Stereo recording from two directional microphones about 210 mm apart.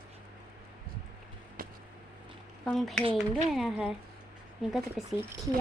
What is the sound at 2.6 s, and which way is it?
A woman's voice, centre (ahead or behind).